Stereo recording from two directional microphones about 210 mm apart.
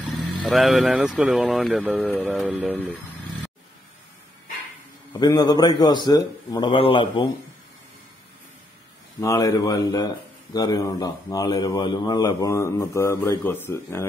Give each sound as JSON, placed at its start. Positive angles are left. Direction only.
{"t": 0.2, "sound": "speech", "side_deg": 0}
{"t": 2.0, "sound": "speech", "side_deg": 10}
{"t": 5.2, "sound": "a man's voice", "side_deg": 20}
{"t": 9.2, "sound": "speech", "side_deg": 15}